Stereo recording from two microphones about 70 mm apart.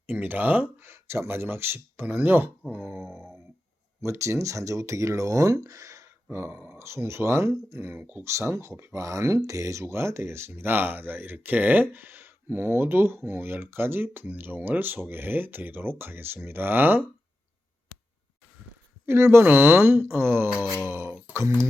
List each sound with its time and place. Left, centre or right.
0.1 s speech: right
4.0 s speech: right
6.3 s speech: right
8.2 s speech: right
19.0 s speech: right